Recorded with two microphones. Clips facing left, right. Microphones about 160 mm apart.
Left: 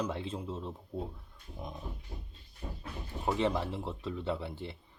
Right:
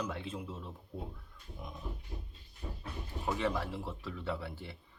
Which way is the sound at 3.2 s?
20° left (ahead or behind).